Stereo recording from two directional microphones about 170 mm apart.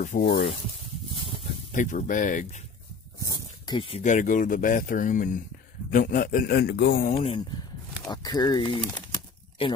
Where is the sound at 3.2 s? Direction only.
25° left (ahead or behind).